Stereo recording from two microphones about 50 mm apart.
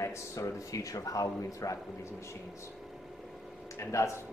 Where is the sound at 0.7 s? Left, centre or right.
Left.